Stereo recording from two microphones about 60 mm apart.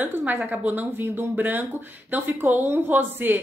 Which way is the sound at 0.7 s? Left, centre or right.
Right.